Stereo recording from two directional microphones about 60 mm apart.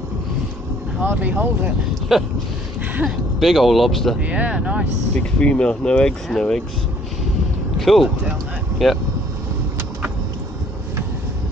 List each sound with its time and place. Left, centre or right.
1.0 s speech: right
2.1 s speech: centre
3.3 s speech: centre
4.2 s speech: right
5.1 s speech: centre
7.8 s speech: centre